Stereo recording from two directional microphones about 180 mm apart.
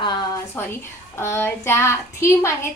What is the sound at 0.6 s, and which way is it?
A woman's voice, 10° left (ahead or behind).